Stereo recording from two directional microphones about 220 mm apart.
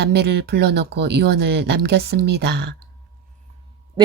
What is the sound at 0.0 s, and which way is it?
Speech, 50° right (ahead or behind).